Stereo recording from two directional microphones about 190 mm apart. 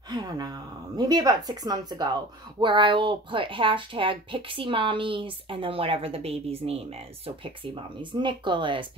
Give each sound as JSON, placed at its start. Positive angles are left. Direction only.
{"t": 0.1, "sound": "speech", "side_deg": -20}